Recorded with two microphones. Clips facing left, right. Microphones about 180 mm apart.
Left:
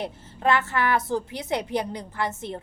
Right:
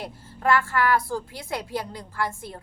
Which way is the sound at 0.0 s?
20° left (ahead or behind).